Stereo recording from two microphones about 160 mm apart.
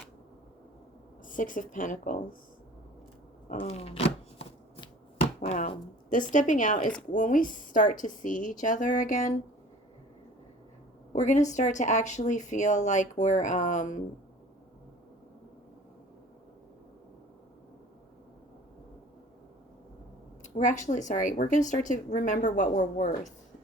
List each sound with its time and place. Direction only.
1.3 s speech: 55° left (ahead or behind)
3.5 s chopping: 45° left (ahead or behind)
5.5 s speech: 55° left (ahead or behind)
11.1 s speech: 50° left (ahead or behind)
20.4 s speech: 50° left (ahead or behind)